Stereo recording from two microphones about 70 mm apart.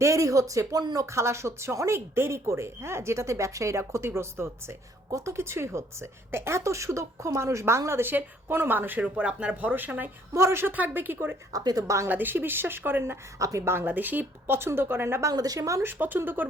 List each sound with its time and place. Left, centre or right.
0.0 s speech: right
9.0 s speech: centre
10.3 s speech: right
11.5 s a woman's voice: right
12.0 s speech: right
13.4 s speech: right
15.4 s speech: right
15.8 s speech: right